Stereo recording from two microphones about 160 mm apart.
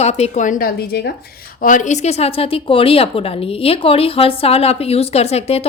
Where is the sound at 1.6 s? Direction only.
55° left (ahead or behind).